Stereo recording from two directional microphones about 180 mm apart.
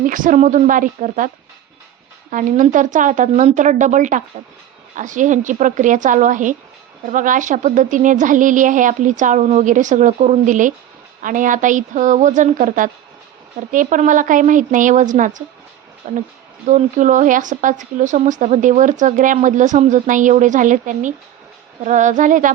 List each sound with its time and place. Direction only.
0.0 s speech: 50° right (ahead or behind)
2.3 s speech: 45° right (ahead or behind)